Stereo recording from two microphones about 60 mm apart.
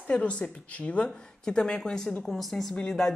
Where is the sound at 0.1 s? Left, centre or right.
Centre.